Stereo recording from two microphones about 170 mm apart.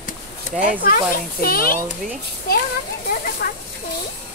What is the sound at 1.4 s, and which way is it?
Speech, 60° left (ahead or behind).